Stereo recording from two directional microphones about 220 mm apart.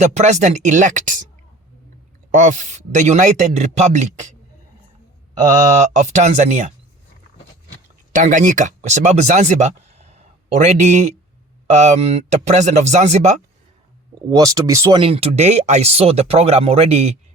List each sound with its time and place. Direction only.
0.0 s speech: 30° right (ahead or behind)
2.3 s speech: 35° right (ahead or behind)
5.7 s speech: 30° right (ahead or behind)
8.1 s speech: 35° right (ahead or behind)
14.2 s speech: 15° right (ahead or behind)